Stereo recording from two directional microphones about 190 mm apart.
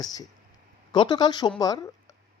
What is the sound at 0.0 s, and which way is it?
Speech, 20° left (ahead or behind).